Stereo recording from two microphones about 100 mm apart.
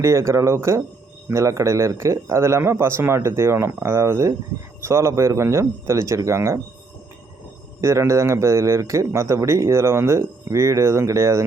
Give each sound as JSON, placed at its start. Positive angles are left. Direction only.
{"t": 0.0, "sound": "a man's voice", "side_deg": -30}
{"t": 7.8, "sound": "a man's voice", "side_deg": -30}